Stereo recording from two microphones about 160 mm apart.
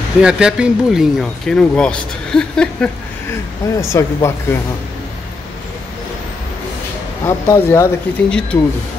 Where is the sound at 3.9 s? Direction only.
20° left (ahead or behind).